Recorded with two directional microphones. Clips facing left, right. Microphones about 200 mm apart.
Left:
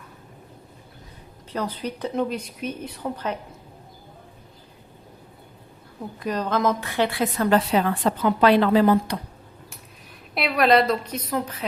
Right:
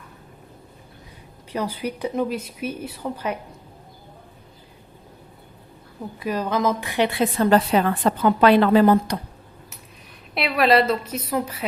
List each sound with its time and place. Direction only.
1.5 s speech: 10° right (ahead or behind)
6.1 s speech: 10° right (ahead or behind); by 7.4 s 25° right (ahead or behind)
7.7 s a woman's voice: 55° right (ahead or behind)
10.3 s a woman's voice: centre (ahead or behind)